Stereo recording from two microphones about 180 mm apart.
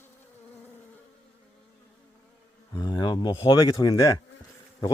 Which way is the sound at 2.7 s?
25° left (ahead or behind).